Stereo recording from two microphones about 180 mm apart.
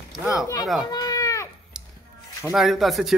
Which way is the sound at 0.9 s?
20° left (ahead or behind).